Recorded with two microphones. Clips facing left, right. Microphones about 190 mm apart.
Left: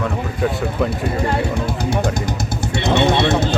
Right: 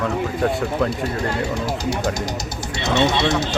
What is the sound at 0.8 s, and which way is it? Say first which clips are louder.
Speech: left 3 dB; 55° left (ahead or behind).